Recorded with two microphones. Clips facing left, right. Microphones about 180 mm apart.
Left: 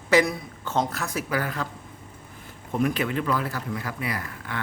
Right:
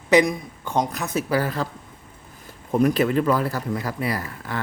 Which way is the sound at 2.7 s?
40° right (ahead or behind).